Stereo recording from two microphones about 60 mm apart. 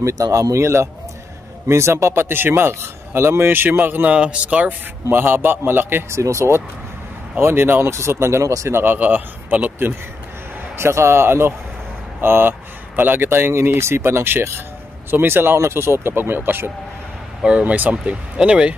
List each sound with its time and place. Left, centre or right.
0.0 s speech: right
2.2 s speech: right
4.0 s speech: centre
5.1 s speech: right
6.0 s speech: right
7.3 s speech: right
8.8 s speech: right
9.8 s speech: right
17.4 s speech: centre